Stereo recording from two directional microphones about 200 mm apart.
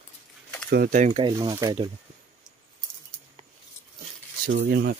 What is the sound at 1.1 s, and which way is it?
Speech, 20° right (ahead or behind).